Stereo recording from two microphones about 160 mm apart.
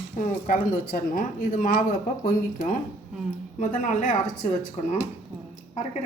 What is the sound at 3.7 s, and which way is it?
Speech, 50° left (ahead or behind).